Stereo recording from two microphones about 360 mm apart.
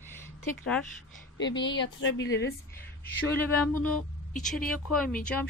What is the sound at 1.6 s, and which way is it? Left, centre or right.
Speech, left.